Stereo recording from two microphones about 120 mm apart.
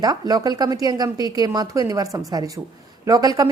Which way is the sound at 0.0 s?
35° right (ahead or behind).